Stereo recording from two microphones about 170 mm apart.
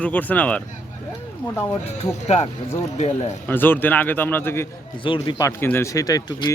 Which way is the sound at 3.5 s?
10° left (ahead or behind).